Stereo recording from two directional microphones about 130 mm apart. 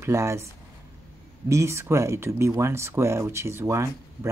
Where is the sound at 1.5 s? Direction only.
20° right (ahead or behind).